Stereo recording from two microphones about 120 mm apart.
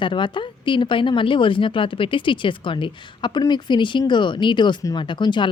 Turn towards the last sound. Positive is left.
turn(degrees=40)  # may be behind; listen again after turning